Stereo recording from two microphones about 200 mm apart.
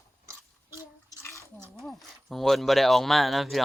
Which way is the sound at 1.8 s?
Centre (ahead or behind).